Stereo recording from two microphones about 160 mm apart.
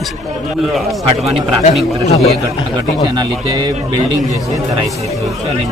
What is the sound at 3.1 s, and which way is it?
Speech, 25° right (ahead or behind).